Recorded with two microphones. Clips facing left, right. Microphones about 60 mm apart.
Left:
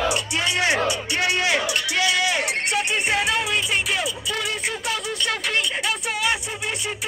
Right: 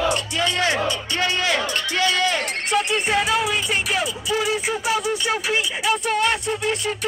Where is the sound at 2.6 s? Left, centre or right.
Centre.